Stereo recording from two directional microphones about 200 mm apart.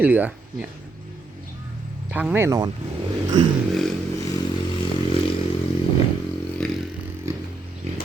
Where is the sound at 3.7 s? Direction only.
Centre (ahead or behind).